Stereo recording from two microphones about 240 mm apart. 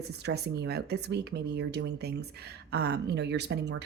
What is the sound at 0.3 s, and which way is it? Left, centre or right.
Speech, right.